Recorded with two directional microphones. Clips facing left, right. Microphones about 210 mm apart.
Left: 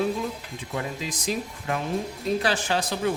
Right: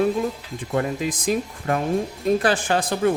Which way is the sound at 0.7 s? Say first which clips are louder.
Right 8 dB; 50° right (ahead or behind).